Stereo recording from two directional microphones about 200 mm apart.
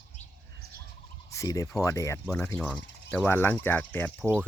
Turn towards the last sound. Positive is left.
turn(degrees=10)  # may be behind; listen again after turning